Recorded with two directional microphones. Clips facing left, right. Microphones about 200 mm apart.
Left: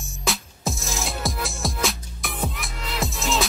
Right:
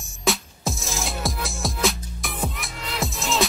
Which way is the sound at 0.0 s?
Centre (ahead or behind).